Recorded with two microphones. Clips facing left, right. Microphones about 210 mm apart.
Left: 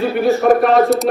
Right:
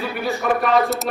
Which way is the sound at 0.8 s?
Centre (ahead or behind).